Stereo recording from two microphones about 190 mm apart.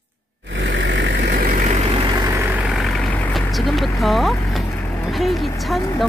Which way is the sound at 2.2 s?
15° right (ahead or behind).